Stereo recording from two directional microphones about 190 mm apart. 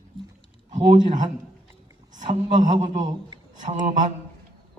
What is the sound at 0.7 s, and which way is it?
A man's voice, 35° right (ahead or behind).